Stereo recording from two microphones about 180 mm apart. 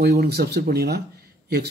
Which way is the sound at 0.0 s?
65° right (ahead or behind).